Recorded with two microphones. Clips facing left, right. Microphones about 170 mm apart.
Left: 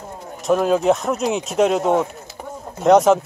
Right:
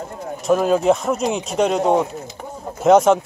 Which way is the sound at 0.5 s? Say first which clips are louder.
Right 1 dB; centre (ahead or behind).